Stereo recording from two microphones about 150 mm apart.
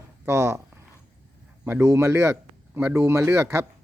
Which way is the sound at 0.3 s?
15° right (ahead or behind).